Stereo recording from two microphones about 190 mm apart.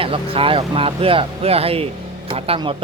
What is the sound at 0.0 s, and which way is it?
Speech, 30° right (ahead or behind).